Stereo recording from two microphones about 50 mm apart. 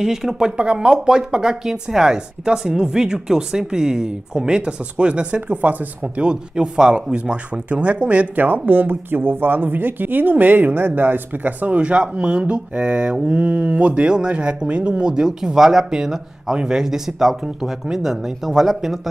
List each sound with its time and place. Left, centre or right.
0.0 s speech: centre
0.5 s speech: right
6.2 s speech: centre
8.6 s speech: right; by 18.9 s centre